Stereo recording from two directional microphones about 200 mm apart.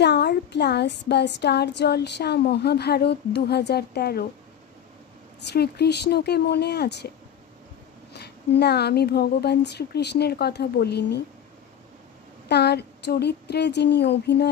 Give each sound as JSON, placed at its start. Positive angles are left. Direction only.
{"t": 0.0, "sound": "speech", "side_deg": 55}
{"t": 5.5, "sound": "speech", "side_deg": 55}
{"t": 8.1, "sound": "speech", "side_deg": 55}
{"t": 12.4, "sound": "speech", "side_deg": 55}